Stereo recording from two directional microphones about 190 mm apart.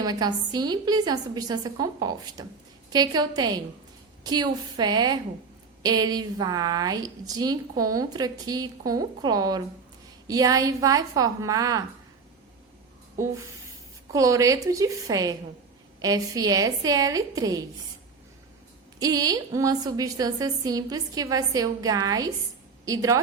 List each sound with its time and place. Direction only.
0.0 s a woman's voice: 20° right (ahead or behind)
14.1 s a woman's voice: 15° right (ahead or behind)
18.9 s a woman's voice: 20° right (ahead or behind)